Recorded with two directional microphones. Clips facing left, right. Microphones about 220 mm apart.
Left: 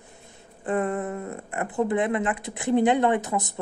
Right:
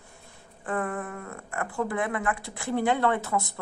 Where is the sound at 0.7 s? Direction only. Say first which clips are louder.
Left 5 dB; 20° left (ahead or behind).